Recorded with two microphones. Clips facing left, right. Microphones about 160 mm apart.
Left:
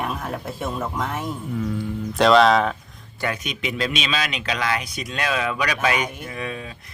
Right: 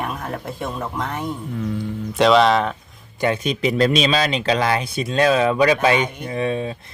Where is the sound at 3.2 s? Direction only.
25° right (ahead or behind).